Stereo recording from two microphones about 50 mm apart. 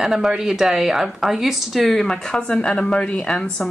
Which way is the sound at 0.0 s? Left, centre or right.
Centre.